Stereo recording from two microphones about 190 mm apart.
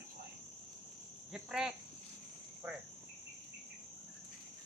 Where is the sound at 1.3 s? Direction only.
Centre (ahead or behind).